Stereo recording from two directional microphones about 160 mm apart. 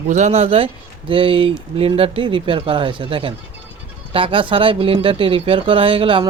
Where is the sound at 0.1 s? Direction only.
45° right (ahead or behind).